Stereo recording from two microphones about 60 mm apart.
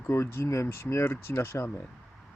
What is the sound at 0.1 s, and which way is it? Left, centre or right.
Speech, left.